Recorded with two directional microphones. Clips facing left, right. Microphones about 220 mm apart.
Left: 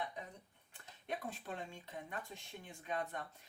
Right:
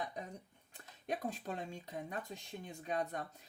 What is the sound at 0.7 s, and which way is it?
Speech, 40° right (ahead or behind).